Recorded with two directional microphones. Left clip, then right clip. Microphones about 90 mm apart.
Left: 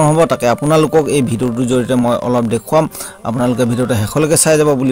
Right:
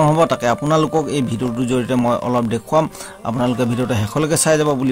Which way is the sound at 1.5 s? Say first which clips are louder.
Left 4 dB; 40° left (ahead or behind).